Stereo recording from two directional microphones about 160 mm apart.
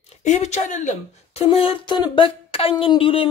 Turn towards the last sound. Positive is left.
turn(degrees=35)  # may be behind; listen again after turning